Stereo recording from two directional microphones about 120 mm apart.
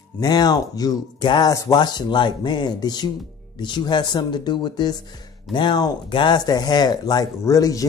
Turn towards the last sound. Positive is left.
turn(degrees=30)  # may be behind; listen again after turning